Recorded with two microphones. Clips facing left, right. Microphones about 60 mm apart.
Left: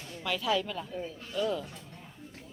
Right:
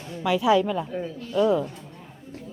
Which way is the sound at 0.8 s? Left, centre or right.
Right.